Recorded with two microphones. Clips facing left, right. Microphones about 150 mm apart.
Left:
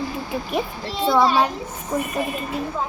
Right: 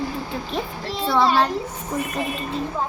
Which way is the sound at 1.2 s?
Centre (ahead or behind).